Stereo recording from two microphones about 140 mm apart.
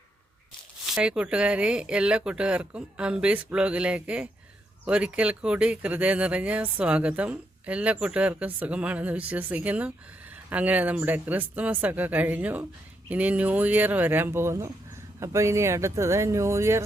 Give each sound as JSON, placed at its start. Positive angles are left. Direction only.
{"t": 0.9, "sound": "speech", "side_deg": -5}